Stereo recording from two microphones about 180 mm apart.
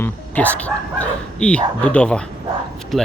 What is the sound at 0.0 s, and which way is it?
Speech, 10° left (ahead or behind).